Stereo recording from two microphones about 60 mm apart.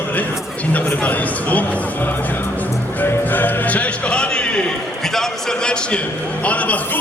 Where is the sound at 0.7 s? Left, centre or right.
Left.